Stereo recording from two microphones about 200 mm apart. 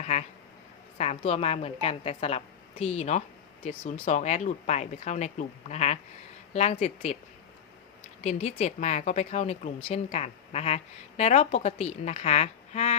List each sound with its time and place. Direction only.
0.0 s a woman's voice: 35° left (ahead or behind)
8.2 s speech: 35° left (ahead or behind)